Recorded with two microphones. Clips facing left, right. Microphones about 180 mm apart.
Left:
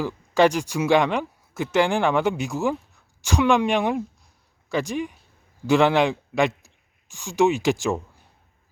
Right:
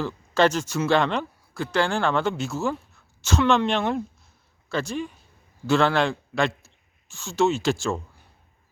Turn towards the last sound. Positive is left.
turn(degrees=15)  # may be behind; listen again after turning